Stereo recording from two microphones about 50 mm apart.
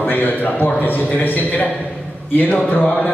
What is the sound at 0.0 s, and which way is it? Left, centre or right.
A man's voice, left.